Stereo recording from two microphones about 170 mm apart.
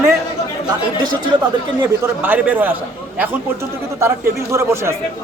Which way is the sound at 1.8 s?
10° right (ahead or behind).